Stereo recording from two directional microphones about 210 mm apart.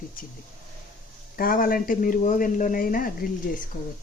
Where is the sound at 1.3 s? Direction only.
45° left (ahead or behind).